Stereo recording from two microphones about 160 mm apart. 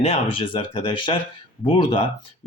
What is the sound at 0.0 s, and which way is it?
Speech, 35° left (ahead or behind).